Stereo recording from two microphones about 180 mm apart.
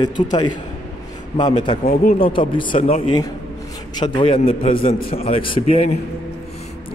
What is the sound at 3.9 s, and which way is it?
A man's voice, 25° left (ahead or behind).